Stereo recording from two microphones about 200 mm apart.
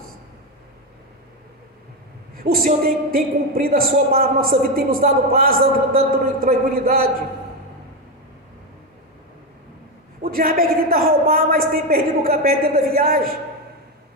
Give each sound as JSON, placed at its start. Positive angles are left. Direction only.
{"t": 2.3, "sound": "a man's voice", "side_deg": -45}
{"t": 10.2, "sound": "a man's voice", "side_deg": -45}